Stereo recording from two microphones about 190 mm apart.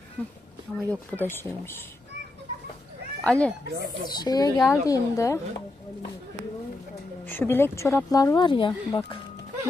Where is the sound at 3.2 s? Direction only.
5° left (ahead or behind).